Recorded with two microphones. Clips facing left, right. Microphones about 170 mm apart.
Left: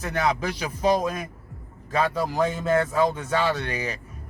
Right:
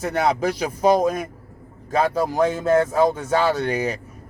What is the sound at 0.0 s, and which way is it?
Speech, 40° right (ahead or behind).